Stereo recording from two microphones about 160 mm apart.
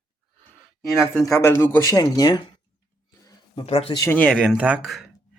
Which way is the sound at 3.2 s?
25° left (ahead or behind).